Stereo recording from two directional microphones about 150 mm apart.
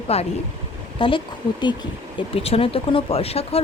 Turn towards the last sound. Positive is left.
turn(degrees=40)  # may be behind; listen again after turning